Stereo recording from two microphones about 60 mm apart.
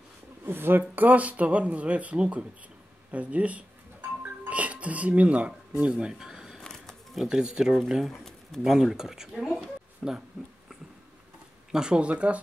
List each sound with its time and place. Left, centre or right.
0.5 s speech: right
4.2 s music: right
6.6 s a sound: centre
7.2 s speech: centre
7.7 s speech: centre
11.7 s speech: centre